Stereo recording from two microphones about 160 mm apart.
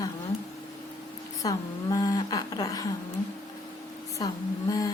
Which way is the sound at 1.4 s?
20° left (ahead or behind).